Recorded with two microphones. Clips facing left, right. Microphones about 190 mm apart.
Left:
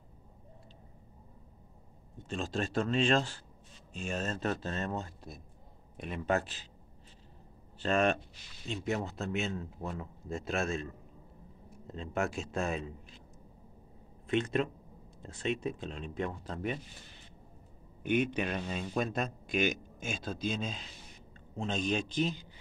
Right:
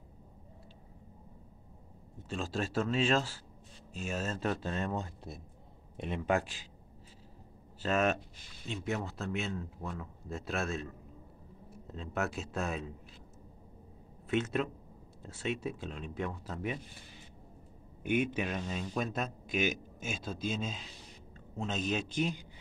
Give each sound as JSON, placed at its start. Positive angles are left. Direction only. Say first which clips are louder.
{"t": 2.1, "sound": "speech", "louder": "left 1 dB", "side_deg": -5}
{"t": 7.8, "sound": "speech", "louder": "left 1 dB", "side_deg": -5}
{"t": 9.8, "sound": "speech", "louder": "left 2 dB", "side_deg": 15}
{"t": 10.3, "sound": "speech", "louder": "left 2 dB", "side_deg": 0}
{"t": 11.9, "sound": "speech", "louder": "left 2 dB", "side_deg": 0}
{"t": 14.3, "sound": "speech", "louder": "left 1 dB", "side_deg": -5}
{"t": 18.0, "sound": "speech", "louder": "left 1 dB", "side_deg": -5}